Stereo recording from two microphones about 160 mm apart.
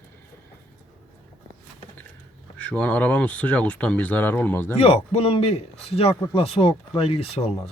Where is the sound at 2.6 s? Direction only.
5° left (ahead or behind).